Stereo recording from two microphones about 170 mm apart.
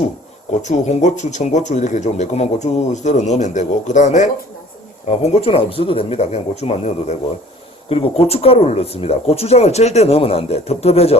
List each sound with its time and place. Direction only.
0.6 s speech: 45° left (ahead or behind)